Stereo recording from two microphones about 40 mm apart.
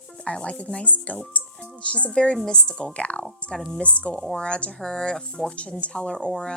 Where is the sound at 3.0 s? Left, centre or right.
Left.